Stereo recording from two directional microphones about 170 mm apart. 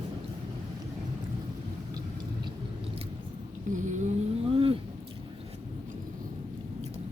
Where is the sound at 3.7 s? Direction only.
45° right (ahead or behind).